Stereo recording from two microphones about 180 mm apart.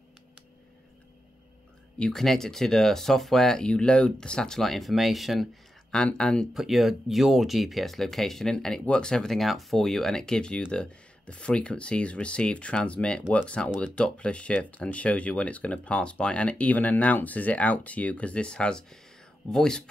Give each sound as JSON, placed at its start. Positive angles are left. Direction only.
{"t": 2.0, "sound": "speech", "side_deg": 5}